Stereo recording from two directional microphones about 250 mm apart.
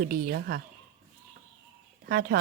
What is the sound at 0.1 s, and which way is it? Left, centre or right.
Speech, right.